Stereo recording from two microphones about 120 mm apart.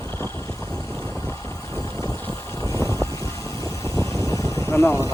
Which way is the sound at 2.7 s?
25° left (ahead or behind).